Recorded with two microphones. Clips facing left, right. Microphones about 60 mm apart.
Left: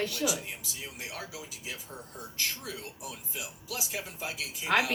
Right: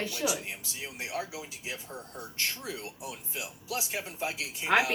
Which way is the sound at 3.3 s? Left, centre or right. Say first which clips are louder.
Right 4 dB; right.